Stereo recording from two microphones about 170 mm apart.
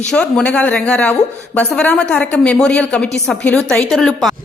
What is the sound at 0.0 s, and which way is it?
A woman's voice, 5° left (ahead or behind).